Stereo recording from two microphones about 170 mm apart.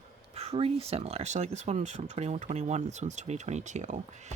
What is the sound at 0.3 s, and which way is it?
Speech, 35° right (ahead or behind).